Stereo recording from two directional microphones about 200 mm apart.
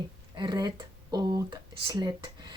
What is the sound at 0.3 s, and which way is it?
Speech, 20° right (ahead or behind).